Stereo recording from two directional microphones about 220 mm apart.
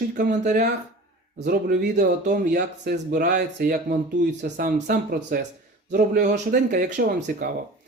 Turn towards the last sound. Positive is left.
turn(degrees=-40)  # may be behind; listen again after turning